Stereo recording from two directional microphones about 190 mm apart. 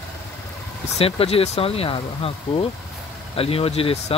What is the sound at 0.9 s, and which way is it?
Speech, 30° left (ahead or behind).